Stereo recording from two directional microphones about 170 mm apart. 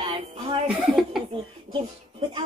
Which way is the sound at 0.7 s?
5° right (ahead or behind).